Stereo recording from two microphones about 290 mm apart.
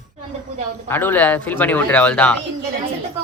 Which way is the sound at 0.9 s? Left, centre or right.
Centre.